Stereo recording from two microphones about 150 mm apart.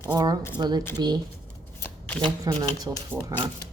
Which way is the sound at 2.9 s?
15° right (ahead or behind).